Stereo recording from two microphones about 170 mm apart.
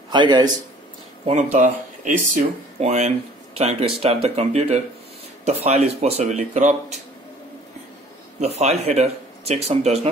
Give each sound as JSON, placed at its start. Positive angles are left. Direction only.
{"t": 0.1, "sound": "a man's voice", "side_deg": -25}
{"t": 1.2, "sound": "speech", "side_deg": -40}
{"t": 8.4, "sound": "speech", "side_deg": -40}